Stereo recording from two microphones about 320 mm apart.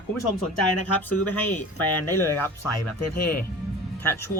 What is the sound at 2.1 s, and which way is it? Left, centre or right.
Speech, centre.